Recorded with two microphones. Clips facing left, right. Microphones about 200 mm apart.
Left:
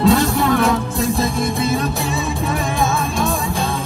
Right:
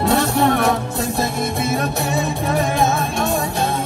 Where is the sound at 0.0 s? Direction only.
25° right (ahead or behind).